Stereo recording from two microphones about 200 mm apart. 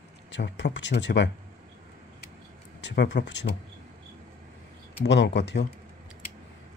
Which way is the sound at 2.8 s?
60° left (ahead or behind).